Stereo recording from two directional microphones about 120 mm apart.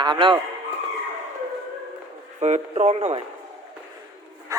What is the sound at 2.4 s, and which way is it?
Speech, 75° right (ahead or behind).